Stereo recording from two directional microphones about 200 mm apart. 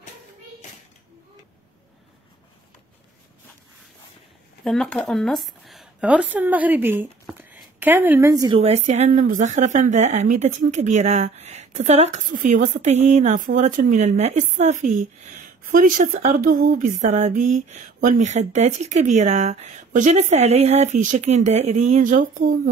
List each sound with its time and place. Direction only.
4.6 s speech: 5° left (ahead or behind); by 8.5 s 15° right (ahead or behind)
8.5 s a woman's voice: 30° right (ahead or behind)